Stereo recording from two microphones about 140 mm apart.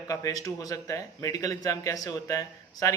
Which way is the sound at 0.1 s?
25° left (ahead or behind).